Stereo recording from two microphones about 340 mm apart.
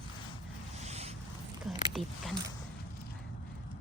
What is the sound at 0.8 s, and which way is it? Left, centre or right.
Zipper, centre.